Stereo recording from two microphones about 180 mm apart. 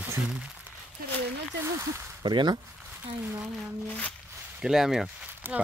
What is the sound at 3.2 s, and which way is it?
Speech, 15° right (ahead or behind).